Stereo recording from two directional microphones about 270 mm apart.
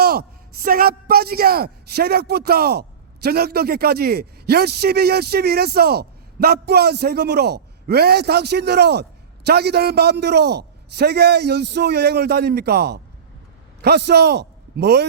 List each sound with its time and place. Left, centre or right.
0.0 s a man's voice: right